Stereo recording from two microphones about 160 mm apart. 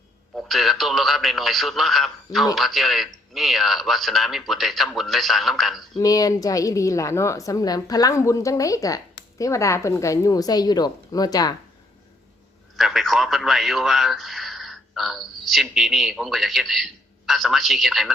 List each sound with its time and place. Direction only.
0.3 s a man's voice: centre (ahead or behind)
6.0 s a woman's voice: 25° left (ahead or behind)
12.7 s a man's voice: centre (ahead or behind)